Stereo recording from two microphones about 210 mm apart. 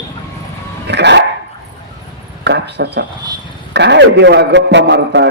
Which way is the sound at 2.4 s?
55° right (ahead or behind).